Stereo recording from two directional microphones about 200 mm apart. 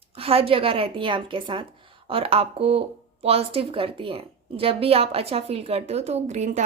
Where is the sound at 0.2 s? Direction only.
30° right (ahead or behind).